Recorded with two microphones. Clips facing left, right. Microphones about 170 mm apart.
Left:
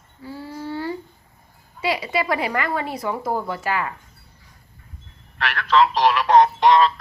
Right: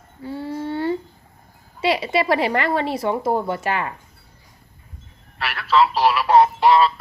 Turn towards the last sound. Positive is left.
turn(degrees=-5)  # may be behind; listen again after turning